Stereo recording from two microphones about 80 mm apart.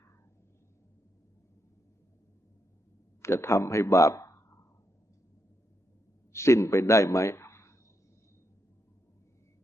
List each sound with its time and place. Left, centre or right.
3.2 s a man's voice: left
6.3 s a man's voice: left